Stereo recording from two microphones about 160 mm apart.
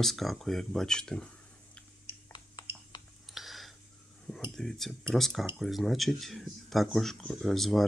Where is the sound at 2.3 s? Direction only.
30° left (ahead or behind).